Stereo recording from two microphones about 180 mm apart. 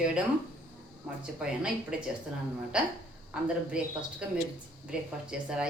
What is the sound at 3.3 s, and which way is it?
A woman's voice, 5° right (ahead or behind).